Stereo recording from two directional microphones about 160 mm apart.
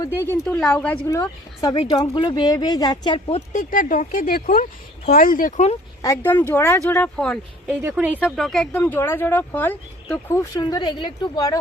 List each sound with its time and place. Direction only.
0.6 s speech: 10° left (ahead or behind); by 3.4 s 30° left (ahead or behind)
3.5 s speech: 55° left (ahead or behind)
6.0 s speech: 15° left (ahead or behind)
7.7 s a woman's voice: 10° right (ahead or behind)
8.8 s speech: 15° left (ahead or behind)
10.6 s speech: 30° left (ahead or behind)